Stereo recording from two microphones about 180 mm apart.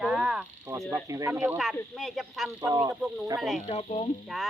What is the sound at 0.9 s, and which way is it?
Speech, 15° right (ahead or behind).